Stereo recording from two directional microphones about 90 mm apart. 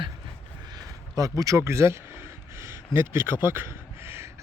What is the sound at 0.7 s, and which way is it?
A man's voice, 40° right (ahead or behind).